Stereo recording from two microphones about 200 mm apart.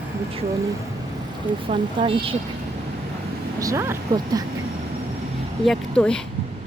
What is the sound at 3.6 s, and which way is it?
Speech, 15° right (ahead or behind).